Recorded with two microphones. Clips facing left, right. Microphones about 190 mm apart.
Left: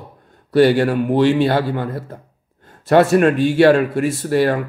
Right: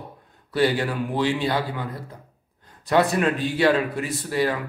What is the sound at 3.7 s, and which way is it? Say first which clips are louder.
Speech: left 8 dB; 55° left (ahead or behind).